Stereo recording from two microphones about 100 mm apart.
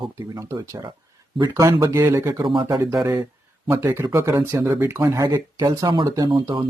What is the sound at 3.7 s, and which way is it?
Speech, 25° right (ahead or behind).